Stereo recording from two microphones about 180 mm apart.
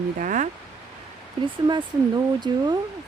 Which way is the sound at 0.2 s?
45° right (ahead or behind).